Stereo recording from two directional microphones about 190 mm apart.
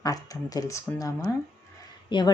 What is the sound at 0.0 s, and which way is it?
Speech, 20° left (ahead or behind).